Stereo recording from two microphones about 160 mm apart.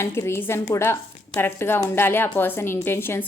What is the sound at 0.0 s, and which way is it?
A woman's voice, 15° left (ahead or behind).